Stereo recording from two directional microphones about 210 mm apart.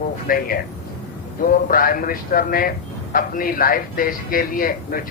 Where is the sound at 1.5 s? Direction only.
40° left (ahead or behind).